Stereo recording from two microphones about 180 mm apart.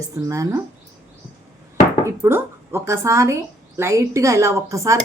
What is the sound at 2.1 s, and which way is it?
A woman's voice, 15° right (ahead or behind).